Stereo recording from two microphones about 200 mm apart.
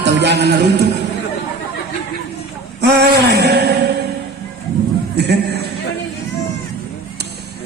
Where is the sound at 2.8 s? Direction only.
55° right (ahead or behind).